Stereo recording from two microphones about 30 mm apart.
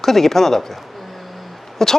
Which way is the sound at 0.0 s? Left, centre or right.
Centre.